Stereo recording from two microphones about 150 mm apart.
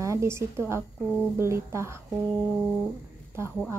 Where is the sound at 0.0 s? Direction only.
20° right (ahead or behind).